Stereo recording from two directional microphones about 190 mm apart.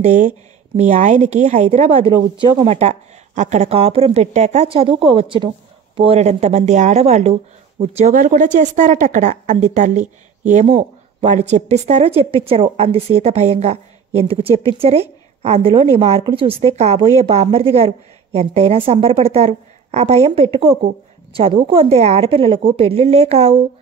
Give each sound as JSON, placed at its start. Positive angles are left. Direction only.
{"t": 0.0, "sound": "a woman's voice", "side_deg": -40}